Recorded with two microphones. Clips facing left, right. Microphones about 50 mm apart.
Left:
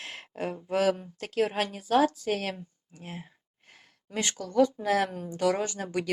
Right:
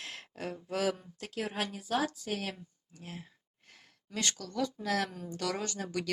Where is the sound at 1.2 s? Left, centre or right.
Left.